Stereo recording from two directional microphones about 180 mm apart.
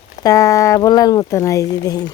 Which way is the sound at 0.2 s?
20° left (ahead or behind).